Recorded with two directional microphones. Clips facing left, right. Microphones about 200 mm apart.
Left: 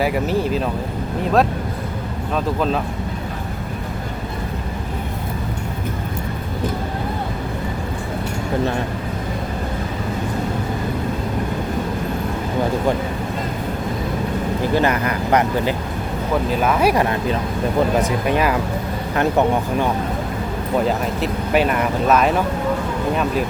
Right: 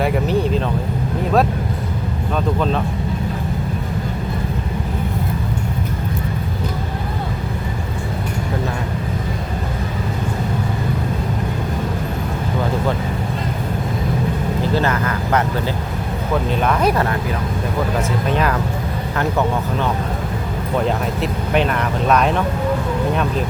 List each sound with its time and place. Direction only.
0.0 s speech: centre (ahead or behind)
2.3 s speech: 5° left (ahead or behind)
14.8 s speech: 15° left (ahead or behind)
16.5 s speech: 5° left (ahead or behind)
20.8 s speech: 5° left (ahead or behind)